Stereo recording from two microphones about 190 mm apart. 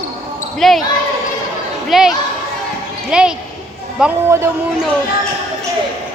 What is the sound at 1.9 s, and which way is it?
Speech, centre (ahead or behind).